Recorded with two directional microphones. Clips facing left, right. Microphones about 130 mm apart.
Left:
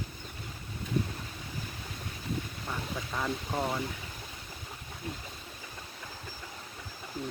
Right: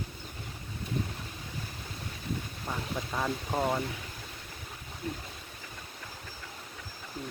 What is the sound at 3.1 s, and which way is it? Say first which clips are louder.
Speech: right 1 dB; 15° right (ahead or behind).